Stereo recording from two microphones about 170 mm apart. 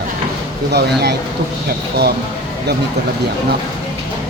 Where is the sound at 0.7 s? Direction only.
75° right (ahead or behind).